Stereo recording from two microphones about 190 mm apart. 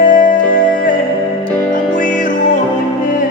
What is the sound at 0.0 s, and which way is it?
Music, 45° left (ahead or behind).